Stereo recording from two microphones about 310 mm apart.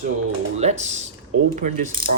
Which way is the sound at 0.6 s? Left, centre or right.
Right.